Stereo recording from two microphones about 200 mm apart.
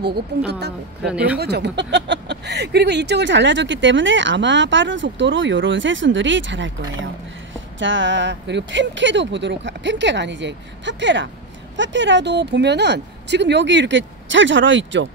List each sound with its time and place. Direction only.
0.5 s speech: 55° right (ahead or behind)
1.0 s speech: 5° right (ahead or behind)
1.4 s speech: 55° right (ahead or behind)
7.8 s speech: 65° right (ahead or behind)